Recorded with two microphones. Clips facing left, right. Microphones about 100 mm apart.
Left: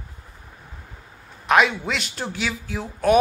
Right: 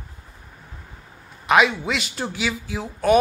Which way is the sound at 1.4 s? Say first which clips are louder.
Right 1 dB; centre (ahead or behind).